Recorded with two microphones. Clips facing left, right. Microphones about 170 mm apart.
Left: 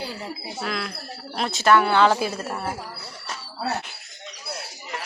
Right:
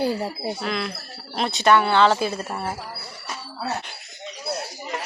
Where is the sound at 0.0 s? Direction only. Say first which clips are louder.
Right 9 dB; 50° right (ahead or behind).